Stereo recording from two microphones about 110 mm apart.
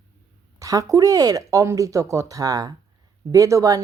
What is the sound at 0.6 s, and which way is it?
Speech, 30° right (ahead or behind).